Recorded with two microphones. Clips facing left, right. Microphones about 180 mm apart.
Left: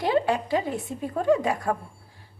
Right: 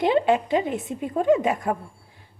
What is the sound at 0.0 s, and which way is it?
A woman's voice, 25° right (ahead or behind).